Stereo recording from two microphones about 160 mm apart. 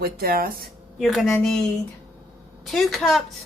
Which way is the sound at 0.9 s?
Centre (ahead or behind).